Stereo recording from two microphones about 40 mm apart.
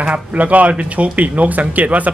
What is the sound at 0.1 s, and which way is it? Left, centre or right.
Speech, right.